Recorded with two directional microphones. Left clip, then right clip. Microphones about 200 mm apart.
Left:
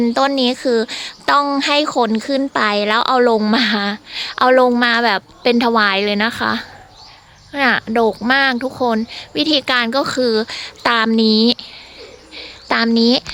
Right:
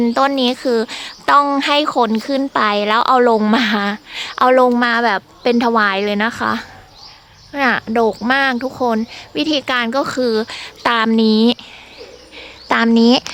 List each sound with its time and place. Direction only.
0.0 s a woman's voice: centre (ahead or behind)
12.4 s a sound: 10° right (ahead or behind)
13.1 s speech: 15° right (ahead or behind)